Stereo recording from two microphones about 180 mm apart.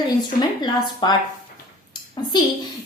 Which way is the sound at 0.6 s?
20° left (ahead or behind).